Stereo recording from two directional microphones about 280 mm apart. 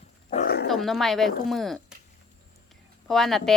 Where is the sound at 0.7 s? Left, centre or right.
Centre.